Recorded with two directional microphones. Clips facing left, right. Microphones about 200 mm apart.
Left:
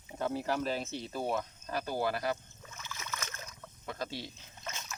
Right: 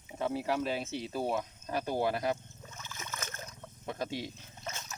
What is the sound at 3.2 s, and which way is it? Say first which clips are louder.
Splash: right 2 dB; 30° right (ahead or behind).